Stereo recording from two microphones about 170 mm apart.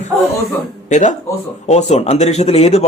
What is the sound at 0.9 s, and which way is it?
A man's voice, 45° left (ahead or behind).